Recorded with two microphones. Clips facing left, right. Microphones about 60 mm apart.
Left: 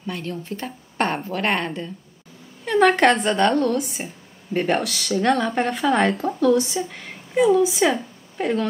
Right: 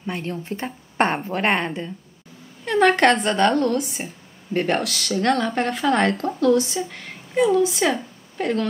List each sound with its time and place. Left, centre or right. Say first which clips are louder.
0.0 s a woman's voice: right 1 dB; right
1.5 s a woman's voice: right 1 dB; centre
2.6 s a woman's voice: even; centre